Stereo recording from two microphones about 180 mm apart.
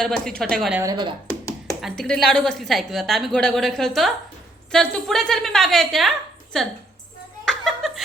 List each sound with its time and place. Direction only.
0.0 s a woman's voice: 5° left (ahead or behind)
0.7 s speech: 15° right (ahead or behind)
1.8 s a woman's voice: 5° left (ahead or behind)
7.4 s chuckle: centre (ahead or behind)